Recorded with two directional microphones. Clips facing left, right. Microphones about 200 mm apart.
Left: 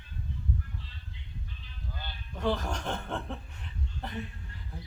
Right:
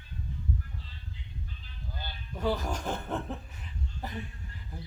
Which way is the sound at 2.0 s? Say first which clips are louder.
Even; 10° right (ahead or behind).